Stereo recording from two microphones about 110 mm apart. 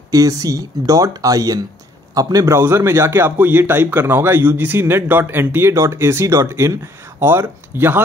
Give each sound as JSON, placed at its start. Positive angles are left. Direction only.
{"t": 0.1, "sound": "speech", "side_deg": -35}
{"t": 2.5, "sound": "a man's voice", "side_deg": -25}